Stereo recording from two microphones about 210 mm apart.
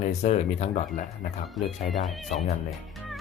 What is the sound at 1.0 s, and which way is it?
Speech, centre (ahead or behind).